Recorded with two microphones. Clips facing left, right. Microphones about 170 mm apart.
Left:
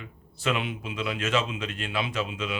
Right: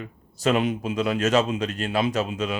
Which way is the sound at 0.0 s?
40° right (ahead or behind).